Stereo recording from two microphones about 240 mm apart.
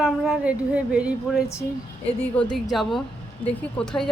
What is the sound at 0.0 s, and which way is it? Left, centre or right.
Speech, centre.